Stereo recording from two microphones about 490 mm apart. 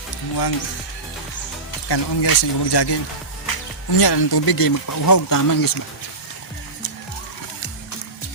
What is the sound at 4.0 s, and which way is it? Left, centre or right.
Speech, left.